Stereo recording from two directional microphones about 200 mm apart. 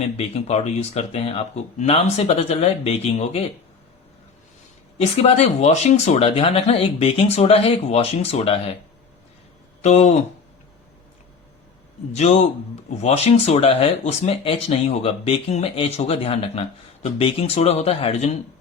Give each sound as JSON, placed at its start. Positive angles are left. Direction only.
{"t": 0.2, "sound": "speech", "side_deg": 35}
{"t": 4.9, "sound": "speech", "side_deg": 30}
{"t": 9.8, "sound": "speech", "side_deg": 35}
{"t": 12.1, "sound": "speech", "side_deg": 35}